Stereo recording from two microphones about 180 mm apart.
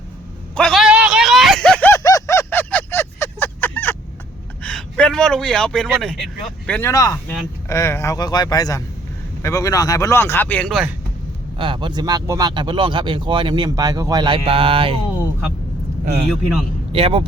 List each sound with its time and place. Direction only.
0.5 s a sound: centre (ahead or behind)
4.6 s speech: 5° left (ahead or behind)
11.5 s speech: 25° right (ahead or behind)
16.9 s speech: 30° right (ahead or behind)